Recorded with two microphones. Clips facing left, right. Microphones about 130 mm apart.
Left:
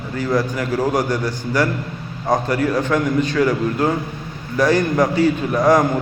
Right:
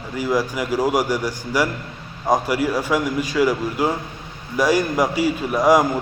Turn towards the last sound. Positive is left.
turn(degrees=-10)  # may be behind; listen again after turning